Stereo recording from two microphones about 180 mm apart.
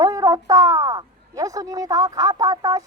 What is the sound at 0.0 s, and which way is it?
A woman's voice, 20° right (ahead or behind).